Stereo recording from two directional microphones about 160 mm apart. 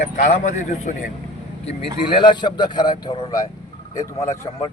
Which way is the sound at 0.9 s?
55° left (ahead or behind).